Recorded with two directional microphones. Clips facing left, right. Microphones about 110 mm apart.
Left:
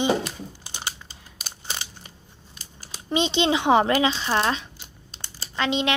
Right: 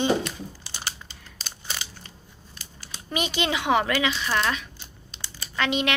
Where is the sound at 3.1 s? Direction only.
25° left (ahead or behind).